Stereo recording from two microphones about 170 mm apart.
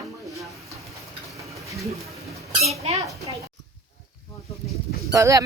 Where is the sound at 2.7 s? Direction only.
40° right (ahead or behind).